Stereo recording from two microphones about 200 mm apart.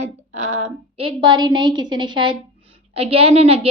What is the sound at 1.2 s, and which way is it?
A woman's voice, 20° right (ahead or behind).